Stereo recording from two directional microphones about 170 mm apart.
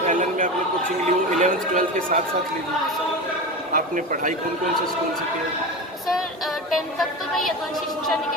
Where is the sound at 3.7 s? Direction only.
50° right (ahead or behind).